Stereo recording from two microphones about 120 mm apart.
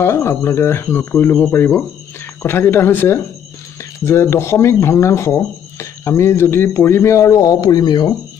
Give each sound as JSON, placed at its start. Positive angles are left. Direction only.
{"t": 0.0, "sound": "speech", "side_deg": 20}